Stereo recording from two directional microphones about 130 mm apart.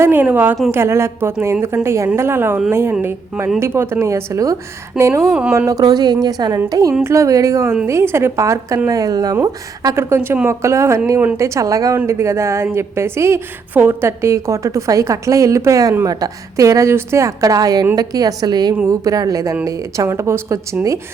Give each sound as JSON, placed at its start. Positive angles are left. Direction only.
{"t": 0.0, "sound": "a woman's voice", "side_deg": -15}
{"t": 5.2, "sound": "speech", "side_deg": -5}
{"t": 5.5, "sound": "a woman's voice", "side_deg": -25}